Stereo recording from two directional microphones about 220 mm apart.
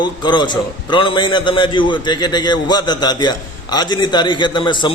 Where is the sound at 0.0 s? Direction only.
20° left (ahead or behind).